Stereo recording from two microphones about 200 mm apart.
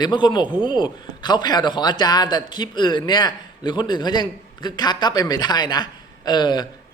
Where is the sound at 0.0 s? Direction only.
20° left (ahead or behind).